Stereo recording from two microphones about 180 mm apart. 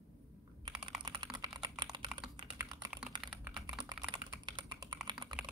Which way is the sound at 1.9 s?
25° right (ahead or behind).